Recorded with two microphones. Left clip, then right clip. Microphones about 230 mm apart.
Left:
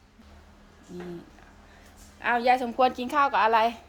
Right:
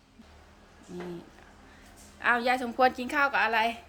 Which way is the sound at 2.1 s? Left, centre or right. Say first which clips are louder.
Left 3 dB; centre.